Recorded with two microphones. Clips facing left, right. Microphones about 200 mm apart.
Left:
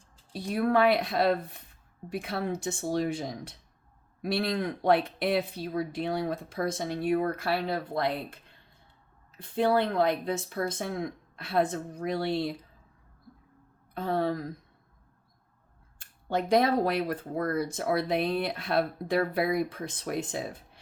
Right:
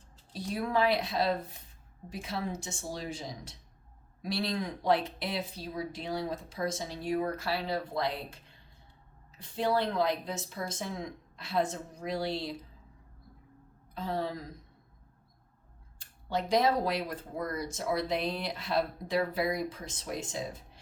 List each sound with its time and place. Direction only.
0.3 s speech: 60° left (ahead or behind)
9.4 s speech: 55° left (ahead or behind)
13.9 s speech: 55° left (ahead or behind)
16.0 s speech: 55° left (ahead or behind)